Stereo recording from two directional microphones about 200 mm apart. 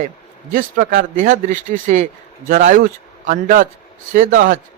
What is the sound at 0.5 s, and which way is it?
A man's voice, 45° right (ahead or behind).